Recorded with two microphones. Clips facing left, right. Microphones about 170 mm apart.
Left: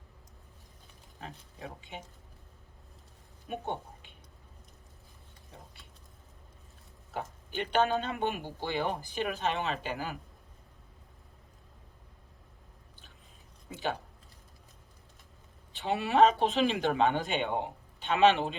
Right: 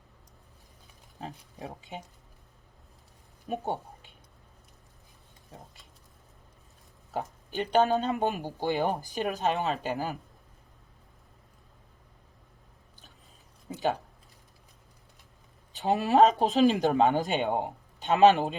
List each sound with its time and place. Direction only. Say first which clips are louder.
1.2 s speech: right 4 dB; 35° right (ahead or behind)
3.5 s speech: right 4 dB; 35° right (ahead or behind)
7.1 s speech: right 4 dB; 40° right (ahead or behind)
13.7 s a sound: right 5 dB; 40° right (ahead or behind)
15.7 s speech: right 5 dB; 40° right (ahead or behind)